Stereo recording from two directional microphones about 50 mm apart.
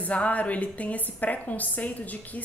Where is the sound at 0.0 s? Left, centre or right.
Left.